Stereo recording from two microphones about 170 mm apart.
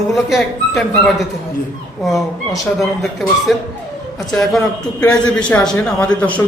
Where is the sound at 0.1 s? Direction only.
Centre (ahead or behind).